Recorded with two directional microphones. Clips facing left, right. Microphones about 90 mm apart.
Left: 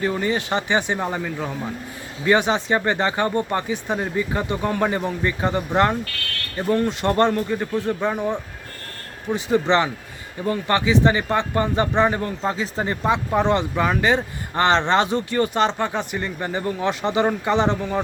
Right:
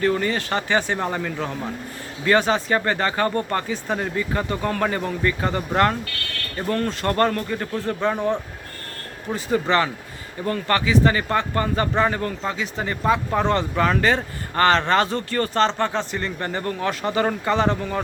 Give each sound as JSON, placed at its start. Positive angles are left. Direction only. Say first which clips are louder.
{"t": 0.0, "sound": "speech", "louder": "right 1 dB", "side_deg": 15}
{"t": 13.1, "sound": "speech", "louder": "even", "side_deg": 15}